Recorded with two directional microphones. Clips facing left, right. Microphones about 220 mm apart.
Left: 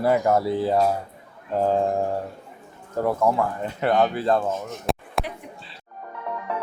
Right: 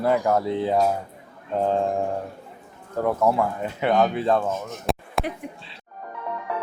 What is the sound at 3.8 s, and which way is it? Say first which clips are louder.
Speech: even; centre (ahead or behind).